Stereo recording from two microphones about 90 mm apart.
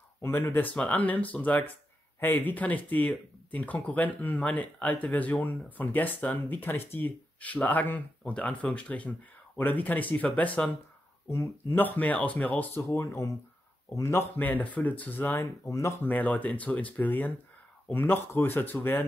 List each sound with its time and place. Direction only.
0.2 s speech: 25° left (ahead or behind)
11.2 s speech: 30° left (ahead or behind)
11.8 s speech: 20° left (ahead or behind)
12.9 s speech: 35° left (ahead or behind)
14.4 s speech: 20° left (ahead or behind)
15.4 s speech: 35° left (ahead or behind)
16.0 s speech: 20° left (ahead or behind)